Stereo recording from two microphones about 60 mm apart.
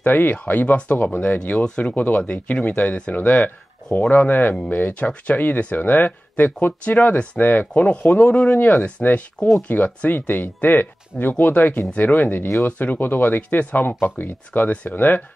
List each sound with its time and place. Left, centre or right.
0.0 s speech: left